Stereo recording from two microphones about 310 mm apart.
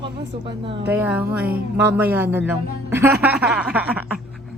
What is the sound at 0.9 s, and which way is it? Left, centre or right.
Speech, centre.